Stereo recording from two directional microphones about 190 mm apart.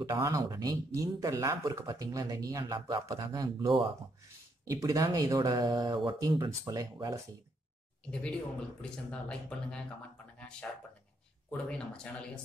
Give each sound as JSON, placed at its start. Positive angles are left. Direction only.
{"t": 0.0, "sound": "speech", "side_deg": -15}
{"t": 8.1, "sound": "speech", "side_deg": 5}